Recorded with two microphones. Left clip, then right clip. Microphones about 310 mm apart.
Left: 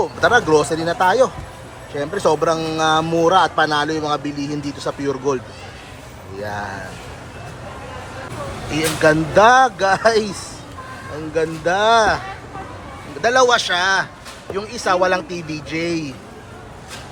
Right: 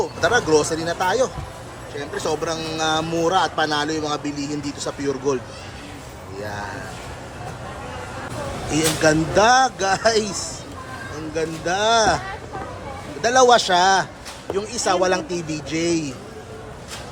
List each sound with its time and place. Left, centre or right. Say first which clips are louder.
0.0 s speech: left 4 dB; centre
6.4 s speech: left 4 dB; centre
8.7 s speech: left 3 dB; centre
13.2 s speech: even; centre